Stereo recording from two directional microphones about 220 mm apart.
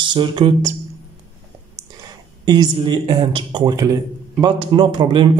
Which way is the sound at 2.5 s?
20° right (ahead or behind).